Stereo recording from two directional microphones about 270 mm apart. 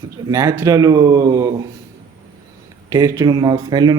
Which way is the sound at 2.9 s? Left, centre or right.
Centre.